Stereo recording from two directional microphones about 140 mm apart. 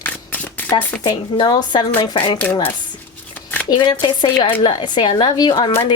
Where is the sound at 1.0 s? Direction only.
30° left (ahead or behind).